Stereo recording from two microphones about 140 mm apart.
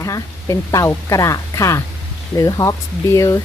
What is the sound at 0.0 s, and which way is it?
Speech, 20° left (ahead or behind).